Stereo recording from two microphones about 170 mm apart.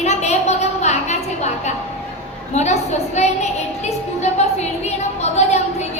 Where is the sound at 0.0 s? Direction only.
40° left (ahead or behind).